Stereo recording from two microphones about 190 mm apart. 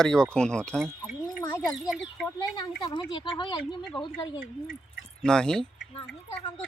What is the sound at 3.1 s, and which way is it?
Speech, 25° left (ahead or behind).